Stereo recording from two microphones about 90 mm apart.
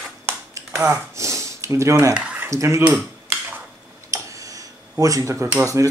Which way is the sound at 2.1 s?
15° right (ahead or behind).